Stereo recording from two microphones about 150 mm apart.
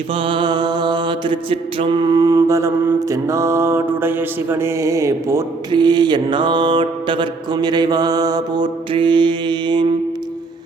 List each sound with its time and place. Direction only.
0.1 s mantra: 35° right (ahead or behind)